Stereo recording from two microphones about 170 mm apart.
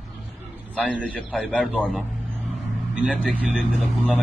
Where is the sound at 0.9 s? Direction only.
10° left (ahead or behind).